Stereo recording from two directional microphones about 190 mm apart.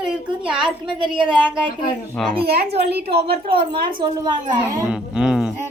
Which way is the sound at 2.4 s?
55° right (ahead or behind).